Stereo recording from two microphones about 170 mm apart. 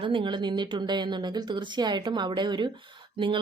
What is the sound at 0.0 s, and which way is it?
A woman's voice, 30° right (ahead or behind).